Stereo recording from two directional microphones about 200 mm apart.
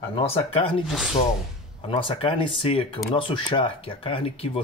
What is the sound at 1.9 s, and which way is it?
Speech, 25° left (ahead or behind).